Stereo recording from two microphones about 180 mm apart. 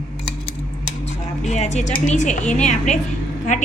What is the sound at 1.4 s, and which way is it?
A woman's voice, 40° left (ahead or behind).